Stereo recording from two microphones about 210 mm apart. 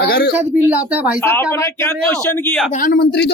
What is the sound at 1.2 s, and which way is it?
Speech, 10° left (ahead or behind).